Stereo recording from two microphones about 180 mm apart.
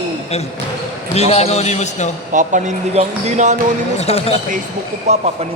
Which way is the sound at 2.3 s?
45° right (ahead or behind).